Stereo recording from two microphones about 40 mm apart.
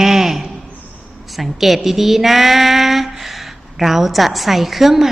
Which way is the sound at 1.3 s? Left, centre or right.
Centre.